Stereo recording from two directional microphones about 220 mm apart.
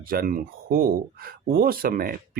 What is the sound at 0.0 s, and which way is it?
Speech, 40° right (ahead or behind).